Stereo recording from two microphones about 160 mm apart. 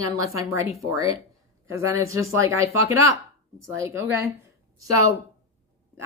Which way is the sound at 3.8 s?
15° right (ahead or behind).